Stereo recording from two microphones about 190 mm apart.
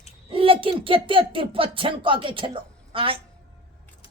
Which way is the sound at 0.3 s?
30° right (ahead or behind).